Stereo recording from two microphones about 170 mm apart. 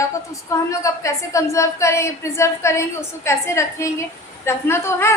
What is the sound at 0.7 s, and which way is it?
A woman's voice, 20° left (ahead or behind).